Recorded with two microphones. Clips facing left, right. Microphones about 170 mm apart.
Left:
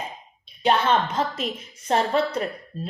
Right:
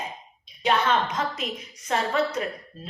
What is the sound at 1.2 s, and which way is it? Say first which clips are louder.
Speech: left 3 dB; 30° left (ahead or behind).